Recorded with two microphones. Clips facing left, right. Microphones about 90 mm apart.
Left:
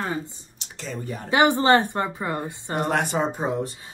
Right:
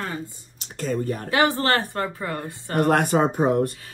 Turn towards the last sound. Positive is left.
turn(degrees=-60)  # may be behind; listen again after turning